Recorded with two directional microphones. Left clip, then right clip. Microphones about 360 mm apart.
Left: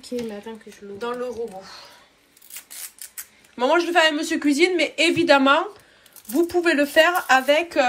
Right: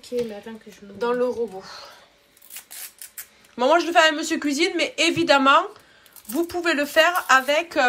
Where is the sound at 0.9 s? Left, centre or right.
Centre.